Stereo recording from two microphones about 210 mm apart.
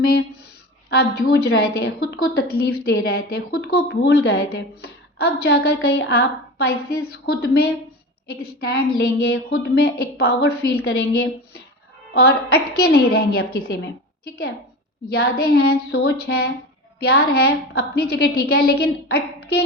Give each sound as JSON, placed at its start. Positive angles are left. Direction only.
{"t": 0.0, "sound": "a woman's voice", "side_deg": 50}
{"t": 1.5, "sound": "a woman's voice", "side_deg": 50}
{"t": 15.1, "sound": "a woman's voice", "side_deg": 50}